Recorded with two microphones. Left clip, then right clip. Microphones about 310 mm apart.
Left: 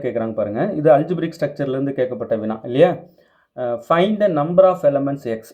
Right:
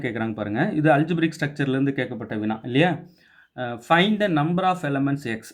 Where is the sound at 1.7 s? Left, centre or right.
Centre.